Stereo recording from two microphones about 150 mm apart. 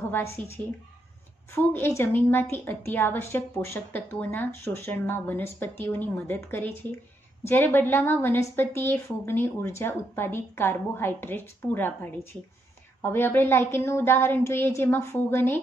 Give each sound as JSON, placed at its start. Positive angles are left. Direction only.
{"t": 0.1, "sound": "a woman's voice", "side_deg": 15}
{"t": 1.5, "sound": "a woman's voice", "side_deg": 15}